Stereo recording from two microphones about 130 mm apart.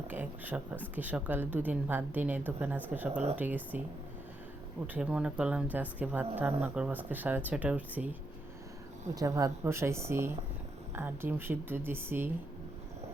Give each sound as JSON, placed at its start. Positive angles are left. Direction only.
{"t": 0.1, "sound": "speech", "side_deg": -15}
{"t": 4.9, "sound": "speech", "side_deg": -10}
{"t": 9.1, "sound": "speech", "side_deg": -25}